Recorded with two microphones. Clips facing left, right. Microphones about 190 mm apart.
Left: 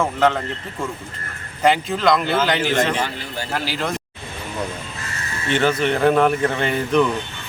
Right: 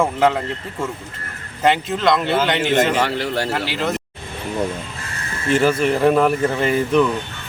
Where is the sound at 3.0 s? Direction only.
75° right (ahead or behind).